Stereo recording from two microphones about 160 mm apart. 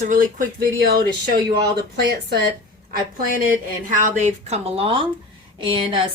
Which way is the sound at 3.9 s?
50° right (ahead or behind).